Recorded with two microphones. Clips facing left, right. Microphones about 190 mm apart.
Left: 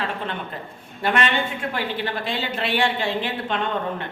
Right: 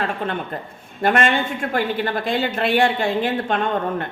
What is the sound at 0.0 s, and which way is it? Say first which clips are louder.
A woman's voice: right 4 dB; 50° right (ahead or behind).